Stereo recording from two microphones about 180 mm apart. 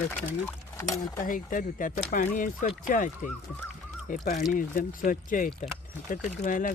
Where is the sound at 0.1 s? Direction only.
10° left (ahead or behind).